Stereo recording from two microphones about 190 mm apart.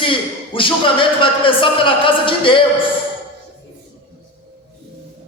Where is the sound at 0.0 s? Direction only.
25° left (ahead or behind).